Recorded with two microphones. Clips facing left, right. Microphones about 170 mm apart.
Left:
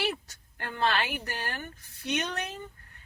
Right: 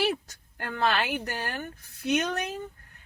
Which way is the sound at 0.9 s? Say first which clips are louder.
Right 2 dB; 45° right (ahead or behind).